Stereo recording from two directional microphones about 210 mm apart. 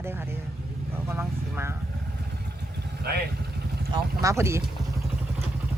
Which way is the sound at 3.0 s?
50° right (ahead or behind).